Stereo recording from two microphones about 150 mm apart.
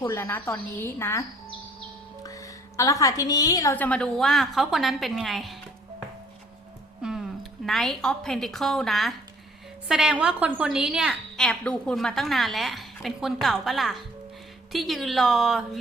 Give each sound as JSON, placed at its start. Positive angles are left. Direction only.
{"t": 0.0, "sound": "a woman's voice", "side_deg": 20}
{"t": 2.2, "sound": "a woman's voice", "side_deg": 20}
{"t": 3.8, "sound": "a woman's voice", "side_deg": 10}
{"t": 7.0, "sound": "a woman's voice", "side_deg": -5}